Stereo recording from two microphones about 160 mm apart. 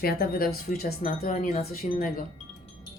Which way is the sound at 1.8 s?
45° left (ahead or behind).